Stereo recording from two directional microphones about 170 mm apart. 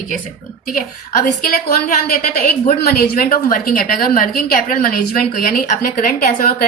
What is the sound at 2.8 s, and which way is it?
A woman's voice, 70° left (ahead or behind).